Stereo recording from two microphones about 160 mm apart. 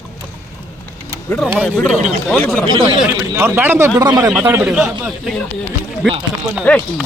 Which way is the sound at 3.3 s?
15° right (ahead or behind).